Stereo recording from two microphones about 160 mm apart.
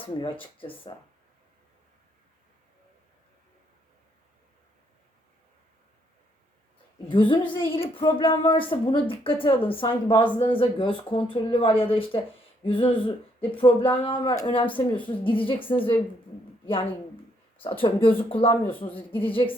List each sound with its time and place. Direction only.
0.0 s speech: 30° left (ahead or behind)
7.1 s speech: 30° left (ahead or behind)
17.6 s speech: 35° left (ahead or behind)
18.9 s a woman's voice: 10° left (ahead or behind)